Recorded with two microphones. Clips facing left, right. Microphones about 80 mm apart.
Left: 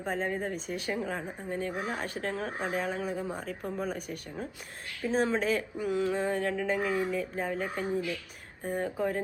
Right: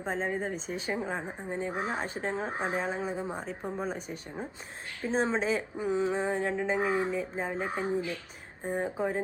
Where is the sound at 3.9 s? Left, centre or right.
Left.